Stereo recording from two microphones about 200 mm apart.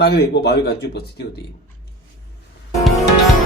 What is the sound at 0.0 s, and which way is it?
A man's voice, 55° left (ahead or behind).